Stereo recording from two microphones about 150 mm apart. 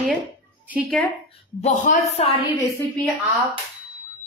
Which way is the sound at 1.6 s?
60° left (ahead or behind).